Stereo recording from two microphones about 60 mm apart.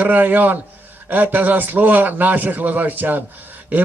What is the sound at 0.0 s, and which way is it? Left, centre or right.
A man's voice, right.